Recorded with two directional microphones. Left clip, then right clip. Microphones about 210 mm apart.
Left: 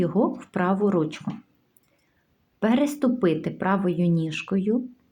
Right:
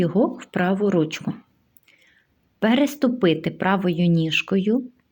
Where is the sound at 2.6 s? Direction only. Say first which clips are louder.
Right 3 dB; 25° right (ahead or behind).